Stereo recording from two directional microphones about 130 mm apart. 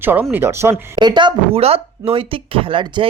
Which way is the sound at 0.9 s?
35° right (ahead or behind).